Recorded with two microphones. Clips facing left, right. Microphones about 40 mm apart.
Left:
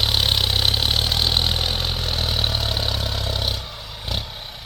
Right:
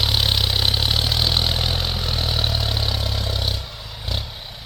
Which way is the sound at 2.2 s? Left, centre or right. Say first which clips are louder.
Even; left.